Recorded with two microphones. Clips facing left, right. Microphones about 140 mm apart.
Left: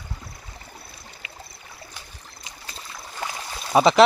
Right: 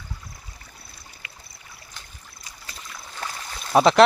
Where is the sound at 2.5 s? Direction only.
25° left (ahead or behind).